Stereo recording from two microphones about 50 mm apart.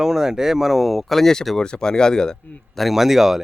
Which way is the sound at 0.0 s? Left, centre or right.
Centre.